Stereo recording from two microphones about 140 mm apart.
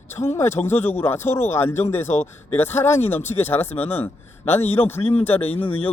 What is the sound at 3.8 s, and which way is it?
Speech, 45° left (ahead or behind).